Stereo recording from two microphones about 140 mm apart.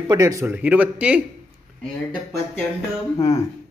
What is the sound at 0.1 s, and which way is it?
Speech, 25° right (ahead or behind).